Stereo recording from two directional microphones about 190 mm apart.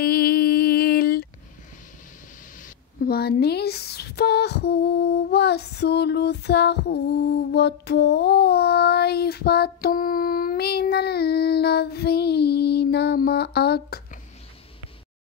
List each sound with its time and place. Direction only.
0.0 s mantra: 55° left (ahead or behind)
2.6 s speech: 50° left (ahead or behind)